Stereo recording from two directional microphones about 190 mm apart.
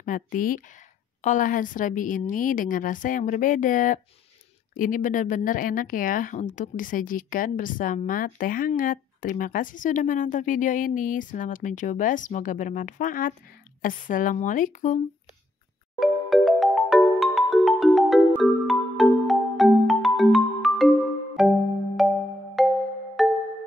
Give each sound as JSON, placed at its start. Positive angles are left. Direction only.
{"t": 0.0, "sound": "speech", "side_deg": 45}
{"t": 16.0, "sound": "music", "side_deg": 0}